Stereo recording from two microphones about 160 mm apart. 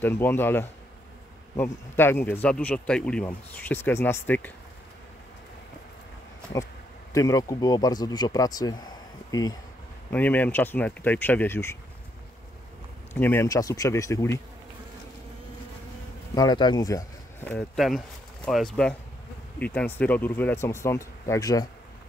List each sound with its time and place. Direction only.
0.0 s speech: 15° left (ahead or behind)
6.5 s speech: 20° left (ahead or behind)
10.1 s speech: 10° left (ahead or behind)
13.1 s speech: 10° left (ahead or behind)
16.3 s speech: 25° left (ahead or behind)
17.5 s speech: centre (ahead or behind); by 21.6 s 20° left (ahead or behind)